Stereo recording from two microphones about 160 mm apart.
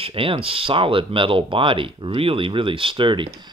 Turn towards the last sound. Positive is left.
turn(degrees=-30)  # may be behind; listen again after turning